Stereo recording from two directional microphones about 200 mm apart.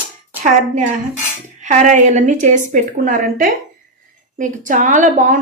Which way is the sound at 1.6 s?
35° right (ahead or behind).